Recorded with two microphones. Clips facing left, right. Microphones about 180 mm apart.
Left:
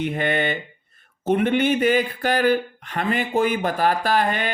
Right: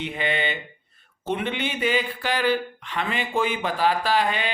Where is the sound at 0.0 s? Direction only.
50° left (ahead or behind).